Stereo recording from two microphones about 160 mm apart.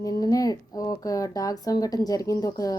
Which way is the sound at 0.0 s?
25° left (ahead or behind).